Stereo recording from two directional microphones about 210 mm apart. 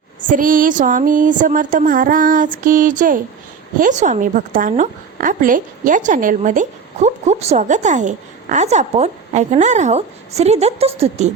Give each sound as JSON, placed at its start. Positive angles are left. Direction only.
{"t": 0.2, "sound": "a woman's voice", "side_deg": -40}